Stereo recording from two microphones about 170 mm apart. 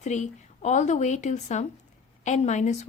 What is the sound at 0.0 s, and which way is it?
A woman's voice, 45° left (ahead or behind).